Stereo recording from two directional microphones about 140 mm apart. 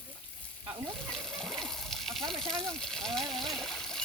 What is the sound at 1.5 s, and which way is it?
Water, centre (ahead or behind).